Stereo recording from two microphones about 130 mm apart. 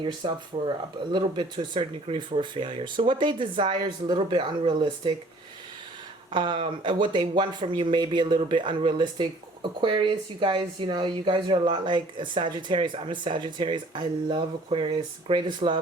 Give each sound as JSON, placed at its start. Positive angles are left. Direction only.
{"t": 0.2, "sound": "speech", "side_deg": -45}
{"t": 6.3, "sound": "speech", "side_deg": -40}